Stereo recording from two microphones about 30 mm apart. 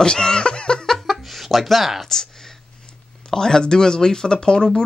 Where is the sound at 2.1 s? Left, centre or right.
Centre.